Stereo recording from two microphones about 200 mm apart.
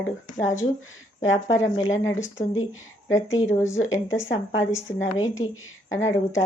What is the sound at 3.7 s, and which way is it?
Speech, 70° left (ahead or behind).